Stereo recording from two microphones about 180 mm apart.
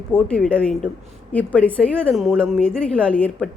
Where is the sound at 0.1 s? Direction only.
5° left (ahead or behind).